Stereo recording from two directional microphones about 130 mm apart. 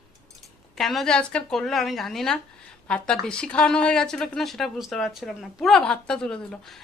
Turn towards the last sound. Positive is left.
turn(degrees=5)  # may be behind; listen again after turning